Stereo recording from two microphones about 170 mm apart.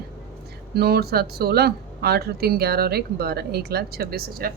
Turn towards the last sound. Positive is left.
turn(degrees=-60)  # may be behind; listen again after turning